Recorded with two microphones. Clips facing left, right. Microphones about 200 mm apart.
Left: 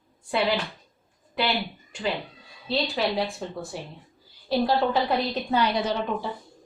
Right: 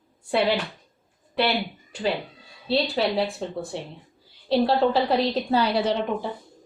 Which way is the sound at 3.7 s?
25° right (ahead or behind).